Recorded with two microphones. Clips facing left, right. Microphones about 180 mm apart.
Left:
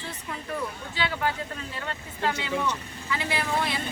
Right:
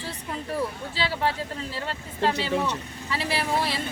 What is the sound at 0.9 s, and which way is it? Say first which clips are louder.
A woman's voice: even; 30° right (ahead or behind).